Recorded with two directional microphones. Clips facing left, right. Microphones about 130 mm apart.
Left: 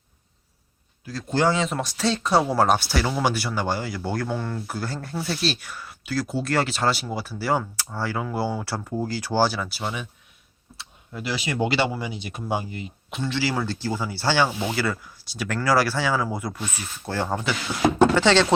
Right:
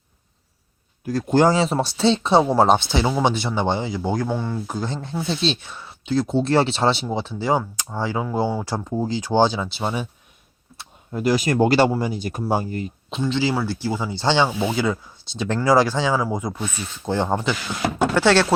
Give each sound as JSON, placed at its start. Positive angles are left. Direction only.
{"t": 1.0, "sound": "speech", "side_deg": -45}
{"t": 4.6, "sound": "speech", "side_deg": -20}
{"t": 10.8, "sound": "speech", "side_deg": -45}
{"t": 13.1, "sound": "speech", "side_deg": -20}